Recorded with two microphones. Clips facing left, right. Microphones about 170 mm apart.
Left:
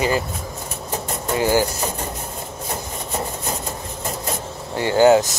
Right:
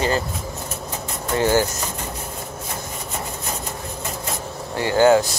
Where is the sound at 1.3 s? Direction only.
15° left (ahead or behind).